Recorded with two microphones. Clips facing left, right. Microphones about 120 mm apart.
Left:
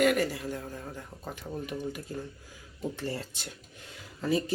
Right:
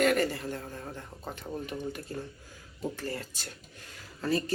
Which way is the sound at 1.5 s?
10° right (ahead or behind).